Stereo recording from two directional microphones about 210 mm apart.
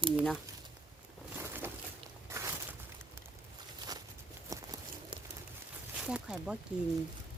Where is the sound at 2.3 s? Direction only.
15° right (ahead or behind).